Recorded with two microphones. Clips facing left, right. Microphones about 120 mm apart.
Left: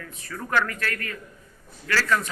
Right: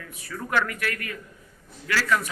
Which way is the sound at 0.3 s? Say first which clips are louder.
Left 1 dB; 15° right (ahead or behind).